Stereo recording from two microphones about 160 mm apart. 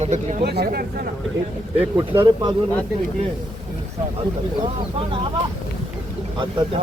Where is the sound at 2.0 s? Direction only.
25° right (ahead or behind).